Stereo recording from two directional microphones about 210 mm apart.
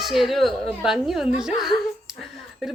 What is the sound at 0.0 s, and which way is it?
A woman's voice, centre (ahead or behind).